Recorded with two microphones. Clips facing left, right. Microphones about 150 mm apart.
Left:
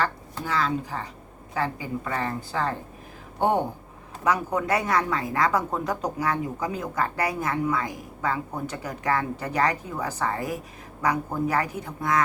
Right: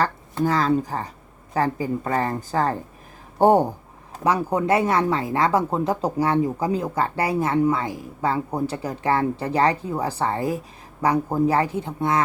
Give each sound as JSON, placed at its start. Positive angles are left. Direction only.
{"t": 0.0, "sound": "a woman's voice", "side_deg": -40}
{"t": 4.2, "sound": "speech", "side_deg": -30}